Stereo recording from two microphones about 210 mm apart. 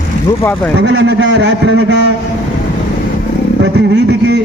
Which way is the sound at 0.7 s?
55° right (ahead or behind).